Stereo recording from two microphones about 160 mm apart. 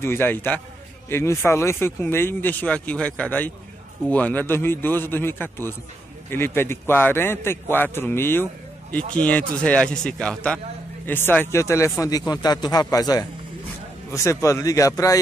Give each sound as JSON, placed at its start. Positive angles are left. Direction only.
{"t": 0.0, "sound": "speech", "side_deg": 15}